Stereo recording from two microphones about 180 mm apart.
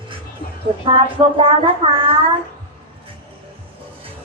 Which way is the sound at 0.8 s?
30° right (ahead or behind).